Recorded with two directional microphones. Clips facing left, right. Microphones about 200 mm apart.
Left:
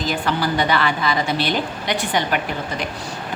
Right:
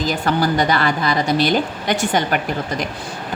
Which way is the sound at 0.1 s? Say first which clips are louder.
Right 2 dB; 40° right (ahead or behind).